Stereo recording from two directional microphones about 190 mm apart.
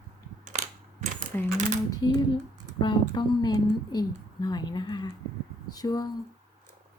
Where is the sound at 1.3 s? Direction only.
10° left (ahead or behind).